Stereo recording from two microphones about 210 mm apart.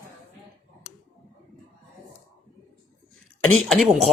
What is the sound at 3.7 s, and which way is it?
Speech, centre (ahead or behind).